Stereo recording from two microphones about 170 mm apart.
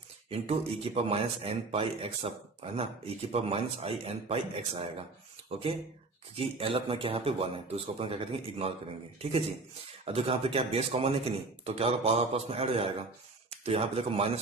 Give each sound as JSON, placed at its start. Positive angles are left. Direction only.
{"t": 0.3, "sound": "speech", "side_deg": -35}
{"t": 10.0, "sound": "speech", "side_deg": -35}